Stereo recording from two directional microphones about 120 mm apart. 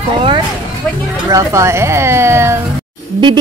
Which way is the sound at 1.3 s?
25° right (ahead or behind).